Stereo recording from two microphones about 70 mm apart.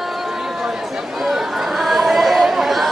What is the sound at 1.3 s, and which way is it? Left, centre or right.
Chatter, centre.